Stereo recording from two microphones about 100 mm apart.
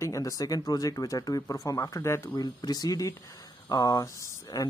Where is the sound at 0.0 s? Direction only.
35° left (ahead or behind).